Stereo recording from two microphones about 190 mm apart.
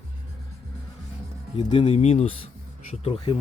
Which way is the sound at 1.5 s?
25° left (ahead or behind).